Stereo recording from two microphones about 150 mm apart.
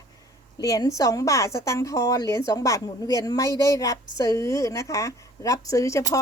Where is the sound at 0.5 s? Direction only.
25° left (ahead or behind).